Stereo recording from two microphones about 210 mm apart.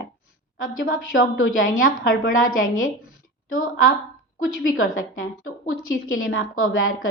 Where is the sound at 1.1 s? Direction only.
70° left (ahead or behind).